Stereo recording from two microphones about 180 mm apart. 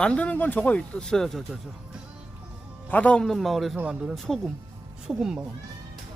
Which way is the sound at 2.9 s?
10° left (ahead or behind).